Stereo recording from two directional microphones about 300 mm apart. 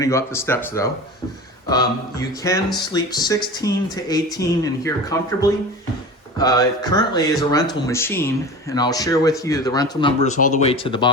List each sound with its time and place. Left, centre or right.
0.0 s speech: centre
2.4 s speech: centre